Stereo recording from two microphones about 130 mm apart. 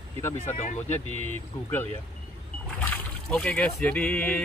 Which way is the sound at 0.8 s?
15° left (ahead or behind).